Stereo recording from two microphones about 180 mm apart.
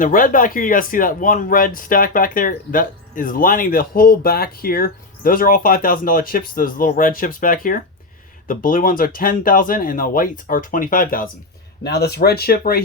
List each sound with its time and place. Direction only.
0.0 s speech: 50° left (ahead or behind)
11.8 s speech: 65° left (ahead or behind)